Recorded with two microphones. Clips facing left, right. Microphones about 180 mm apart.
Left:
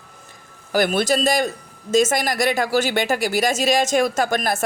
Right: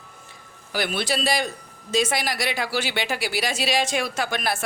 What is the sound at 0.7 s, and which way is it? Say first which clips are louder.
A woman's voice: left 7 dB; 45° left (ahead or behind).